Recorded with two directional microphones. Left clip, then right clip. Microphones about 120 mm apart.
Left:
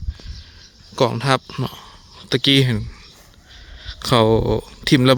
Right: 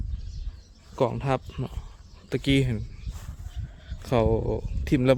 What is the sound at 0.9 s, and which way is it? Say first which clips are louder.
Speech: left 8 dB; 55° left (ahead or behind).